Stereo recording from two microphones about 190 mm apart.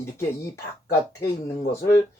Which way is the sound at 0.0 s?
15° left (ahead or behind).